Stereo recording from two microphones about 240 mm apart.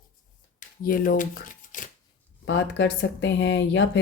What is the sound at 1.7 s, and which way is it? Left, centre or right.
Shuffling cards, left.